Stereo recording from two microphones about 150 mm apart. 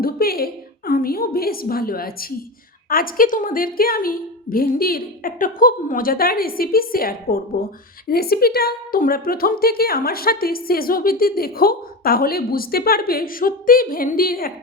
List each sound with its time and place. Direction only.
0.0 s a woman's voice: 85° left
8.1 s a woman's voice: 90° left